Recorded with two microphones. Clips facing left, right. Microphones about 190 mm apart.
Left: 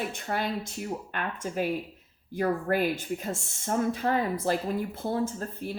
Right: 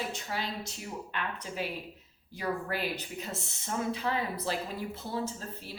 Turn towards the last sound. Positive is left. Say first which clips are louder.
# left 6 dB
turn(degrees=50)  # may be behind; listen again after turning